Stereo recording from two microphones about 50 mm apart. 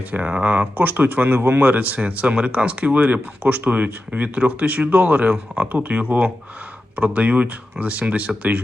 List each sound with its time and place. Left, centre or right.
0.1 s speech: right